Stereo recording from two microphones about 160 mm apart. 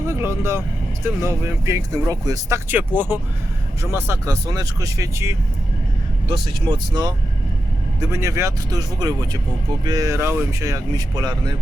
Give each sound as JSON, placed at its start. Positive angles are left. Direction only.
{"t": 0.1, "sound": "speech", "side_deg": -15}
{"t": 2.6, "sound": "speech", "side_deg": -10}
{"t": 6.2, "sound": "speech", "side_deg": -30}